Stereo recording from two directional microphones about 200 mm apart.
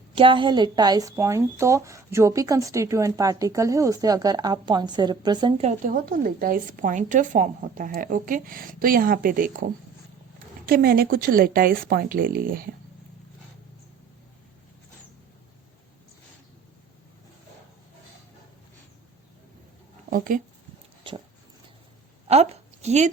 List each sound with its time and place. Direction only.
0.2 s speech: 25° right (ahead or behind)
5.9 s a woman's voice: 45° right (ahead or behind)
10.7 s a woman's voice: 50° right (ahead or behind)
20.1 s speech: 45° right (ahead or behind)
22.3 s a woman's voice: 30° right (ahead or behind)